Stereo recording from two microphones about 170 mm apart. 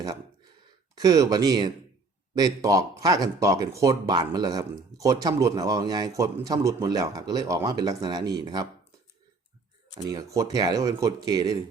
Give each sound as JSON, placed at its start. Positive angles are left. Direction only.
{"t": 0.9, "sound": "speech", "side_deg": -20}
{"t": 10.1, "sound": "speech", "side_deg": -20}